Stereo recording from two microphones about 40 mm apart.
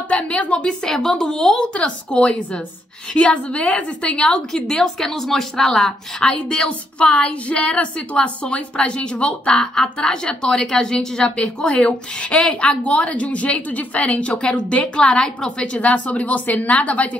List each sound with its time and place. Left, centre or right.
0.4 s a woman's voice: left
0.7 s a woman's voice: centre; by 4.4 s left
4.5 s a woman's voice: centre; by 9.3 s left
9.5 s a woman's voice: centre; by 17.1 s left